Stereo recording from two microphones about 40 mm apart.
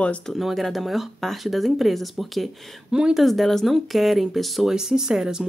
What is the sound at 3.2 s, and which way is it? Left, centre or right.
Speech, centre.